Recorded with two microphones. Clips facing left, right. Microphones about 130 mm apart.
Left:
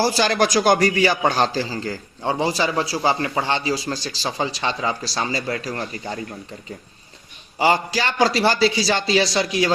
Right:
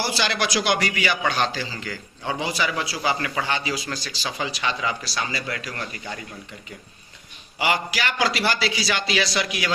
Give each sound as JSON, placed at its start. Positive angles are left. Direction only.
{"t": 0.0, "sound": "a man's voice", "side_deg": 40}
{"t": 7.6, "sound": "a man's voice", "side_deg": 30}